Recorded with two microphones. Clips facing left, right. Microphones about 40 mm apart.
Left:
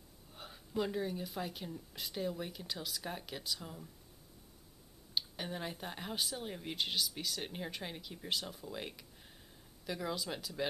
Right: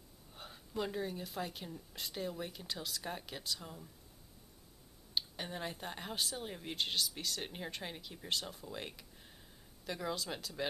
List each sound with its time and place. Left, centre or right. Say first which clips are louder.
0.3 s speech: left 3 dB; centre
5.1 s speech: left 1 dB; centre